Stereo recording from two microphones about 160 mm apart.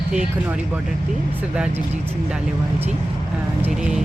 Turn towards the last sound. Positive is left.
turn(degrees=-5)  # may be behind; listen again after turning